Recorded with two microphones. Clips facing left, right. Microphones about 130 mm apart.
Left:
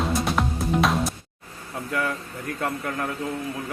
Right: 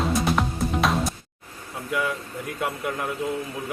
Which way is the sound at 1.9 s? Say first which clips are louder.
Right 1 dB; 5° right (ahead or behind).